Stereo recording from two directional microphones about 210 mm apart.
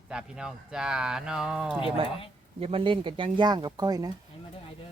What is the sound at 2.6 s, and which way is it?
Speech, 25° right (ahead or behind).